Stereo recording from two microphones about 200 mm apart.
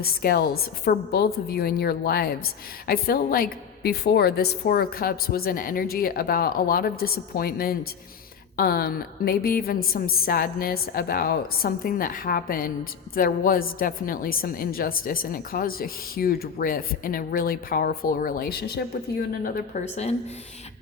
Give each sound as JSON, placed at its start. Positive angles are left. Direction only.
{"t": 0.0, "sound": "a woman's voice", "side_deg": 50}
{"t": 19.5, "sound": "a woman's voice", "side_deg": 35}